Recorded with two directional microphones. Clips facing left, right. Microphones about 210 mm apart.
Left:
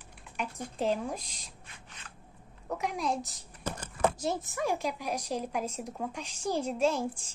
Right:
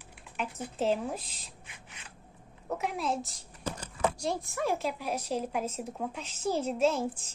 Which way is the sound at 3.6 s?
50° left (ahead or behind).